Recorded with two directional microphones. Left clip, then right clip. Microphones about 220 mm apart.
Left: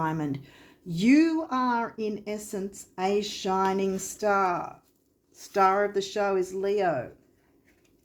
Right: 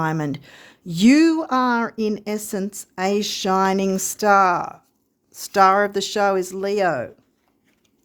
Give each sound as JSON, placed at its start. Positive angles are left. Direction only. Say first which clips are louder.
{"t": 0.0, "sound": "speech", "louder": "right 6 dB", "side_deg": -50}